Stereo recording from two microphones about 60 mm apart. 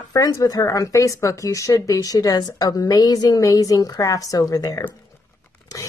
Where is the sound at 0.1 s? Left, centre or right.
Left.